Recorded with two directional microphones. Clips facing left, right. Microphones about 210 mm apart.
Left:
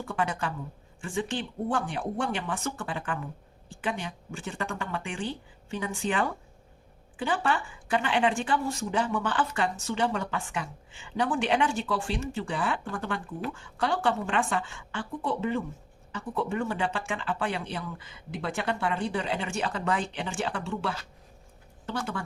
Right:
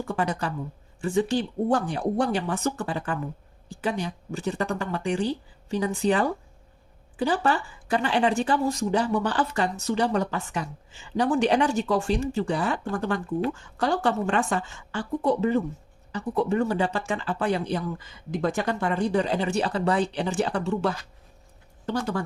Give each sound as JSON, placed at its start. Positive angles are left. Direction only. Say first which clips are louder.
{"t": 0.1, "sound": "speech", "louder": "right 2 dB", "side_deg": -40}